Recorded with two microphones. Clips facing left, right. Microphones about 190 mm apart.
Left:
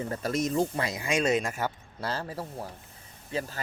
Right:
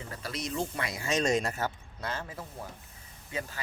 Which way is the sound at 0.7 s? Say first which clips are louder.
Left 4 dB; 25° left (ahead or behind).